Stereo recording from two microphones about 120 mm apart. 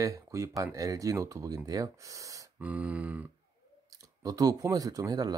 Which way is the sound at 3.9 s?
30° right (ahead or behind).